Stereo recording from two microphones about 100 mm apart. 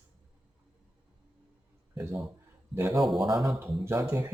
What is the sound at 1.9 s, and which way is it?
Speech, 30° right (ahead or behind).